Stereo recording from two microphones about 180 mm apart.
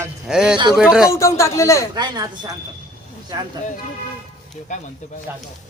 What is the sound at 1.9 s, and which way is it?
Speech, 25° right (ahead or behind).